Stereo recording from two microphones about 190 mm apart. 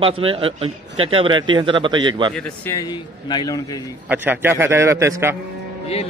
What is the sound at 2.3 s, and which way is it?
Speech, 15° left (ahead or behind).